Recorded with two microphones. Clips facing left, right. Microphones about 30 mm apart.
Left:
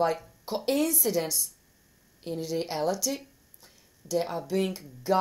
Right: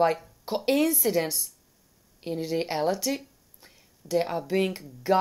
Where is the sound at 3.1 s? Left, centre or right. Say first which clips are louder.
Right 3 dB; centre.